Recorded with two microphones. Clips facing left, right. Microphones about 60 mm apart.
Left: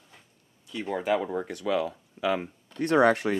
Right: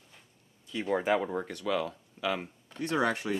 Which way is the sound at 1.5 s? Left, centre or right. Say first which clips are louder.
Left 4 dB; centre.